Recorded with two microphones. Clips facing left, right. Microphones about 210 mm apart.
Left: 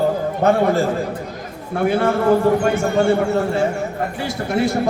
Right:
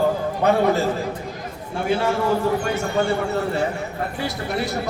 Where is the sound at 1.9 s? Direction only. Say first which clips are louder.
Left 6 dB; 55° left (ahead or behind).